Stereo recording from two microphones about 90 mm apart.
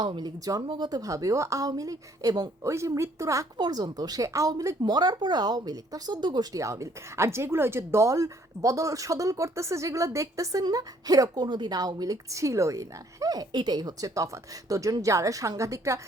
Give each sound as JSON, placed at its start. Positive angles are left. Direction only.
{"t": 0.2, "sound": "speech", "side_deg": -45}
{"t": 0.6, "sound": "speech", "side_deg": -60}
{"t": 3.6, "sound": "speech", "side_deg": -50}
{"t": 4.8, "sound": "speech", "side_deg": -50}
{"t": 11.4, "sound": "speech", "side_deg": -60}